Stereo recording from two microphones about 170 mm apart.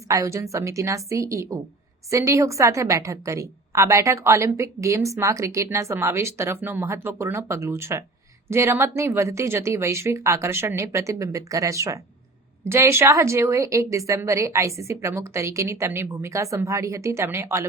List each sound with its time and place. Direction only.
0.1 s a woman's voice: 15° right (ahead or behind)